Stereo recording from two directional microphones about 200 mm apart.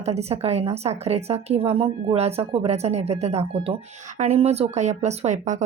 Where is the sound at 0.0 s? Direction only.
30° right (ahead or behind).